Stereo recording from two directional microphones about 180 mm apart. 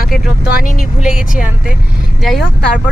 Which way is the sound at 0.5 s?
50° left (ahead or behind).